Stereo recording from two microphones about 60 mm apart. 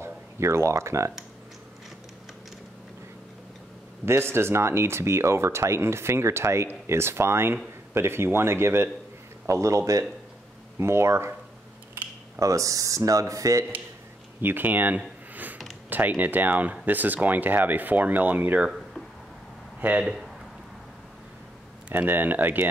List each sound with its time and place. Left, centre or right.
0.0 s speech: right
4.0 s speech: right
9.5 s speech: right
10.8 s speech: right
12.4 s speech: right
14.4 s speech: right
15.3 s a sound: right
15.9 s speech: right
19.8 s speech: right
21.8 s speech: right